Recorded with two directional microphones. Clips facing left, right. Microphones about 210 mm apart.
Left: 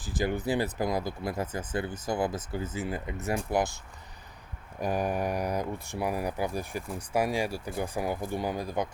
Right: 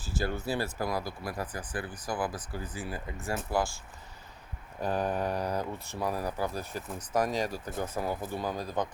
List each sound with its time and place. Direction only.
0.0 s speech: 15° left (ahead or behind)
4.8 s speech: 15° left (ahead or behind)